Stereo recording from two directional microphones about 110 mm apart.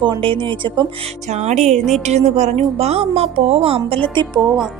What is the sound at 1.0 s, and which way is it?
Music, 90° right.